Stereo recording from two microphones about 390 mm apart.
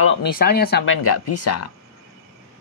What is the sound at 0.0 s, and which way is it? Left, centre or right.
Speech, left.